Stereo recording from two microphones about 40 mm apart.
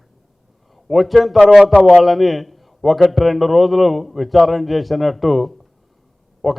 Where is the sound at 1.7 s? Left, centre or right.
Left.